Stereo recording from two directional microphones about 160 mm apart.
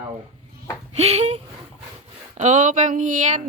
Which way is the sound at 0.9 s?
40° right (ahead or behind).